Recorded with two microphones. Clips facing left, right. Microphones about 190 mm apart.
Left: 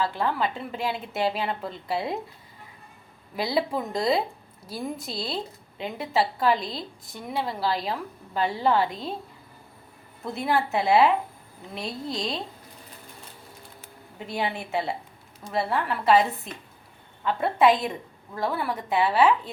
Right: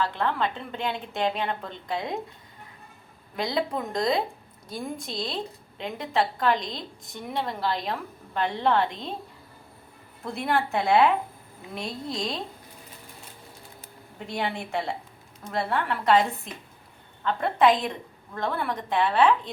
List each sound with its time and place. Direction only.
0.0 s a woman's voice: 10° left (ahead or behind)
3.3 s a woman's voice: 5° left (ahead or behind)
10.2 s a woman's voice: 5° left (ahead or behind)
14.2 s a woman's voice: 5° left (ahead or behind)